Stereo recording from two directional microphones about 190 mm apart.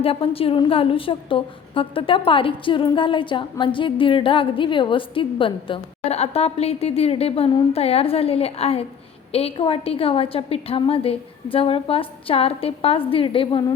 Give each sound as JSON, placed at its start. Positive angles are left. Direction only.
{"t": 0.0, "sound": "a woman's voice", "side_deg": 30}